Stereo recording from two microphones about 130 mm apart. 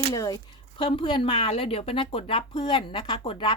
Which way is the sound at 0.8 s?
40° left (ahead or behind).